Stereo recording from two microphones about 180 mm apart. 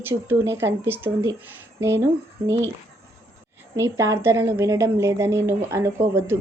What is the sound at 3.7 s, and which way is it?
A woman's voice, 15° right (ahead or behind).